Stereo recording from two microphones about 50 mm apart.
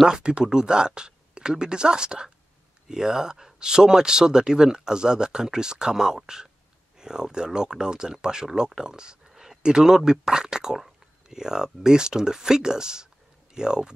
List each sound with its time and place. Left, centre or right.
0.0 s speech: centre